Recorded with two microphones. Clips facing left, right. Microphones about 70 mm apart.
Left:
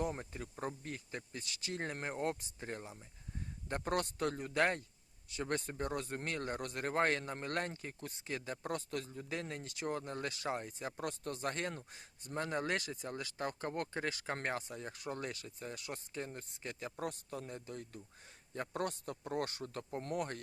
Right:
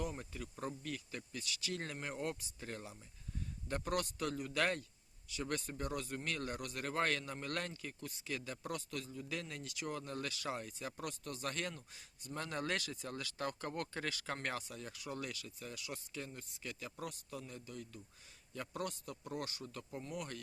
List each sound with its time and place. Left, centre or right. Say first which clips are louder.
0.0 s a man's voice: left 4 dB; left